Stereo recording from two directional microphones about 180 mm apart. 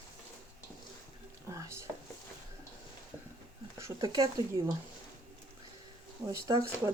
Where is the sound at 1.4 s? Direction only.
15° right (ahead or behind).